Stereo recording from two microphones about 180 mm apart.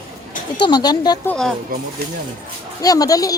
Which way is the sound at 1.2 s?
5° left (ahead or behind).